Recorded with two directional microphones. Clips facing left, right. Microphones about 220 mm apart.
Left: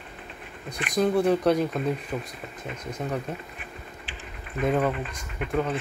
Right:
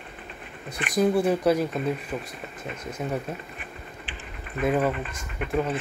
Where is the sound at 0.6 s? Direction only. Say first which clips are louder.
Right 1 dB; 5° right (ahead or behind).